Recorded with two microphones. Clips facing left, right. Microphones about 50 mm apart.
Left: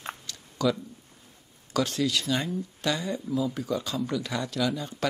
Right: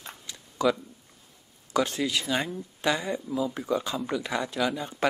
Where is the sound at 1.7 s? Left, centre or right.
Right.